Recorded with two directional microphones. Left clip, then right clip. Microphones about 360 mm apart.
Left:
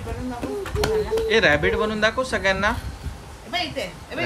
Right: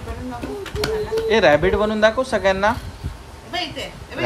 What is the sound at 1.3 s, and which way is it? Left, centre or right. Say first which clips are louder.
Speech: right 4 dB; centre.